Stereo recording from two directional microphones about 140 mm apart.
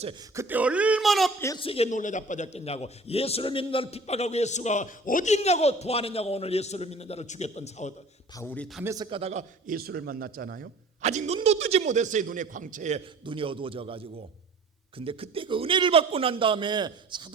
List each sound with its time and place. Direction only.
0.3 s speech: 10° right (ahead or behind)
1.5 s a man's voice: 40° left (ahead or behind)
1.9 s a man's voice: 60° left (ahead or behind)
8.4 s a man's voice: 10° left (ahead or behind)
8.8 s a man's voice: 20° right (ahead or behind)
9.0 s a man's voice: 40° right (ahead or behind)
9.3 s a man's voice: 70° right (ahead or behind); by 10.7 s 90° right
11.0 s speech: 55° right (ahead or behind)
13.2 s a man's voice: 40° right (ahead or behind)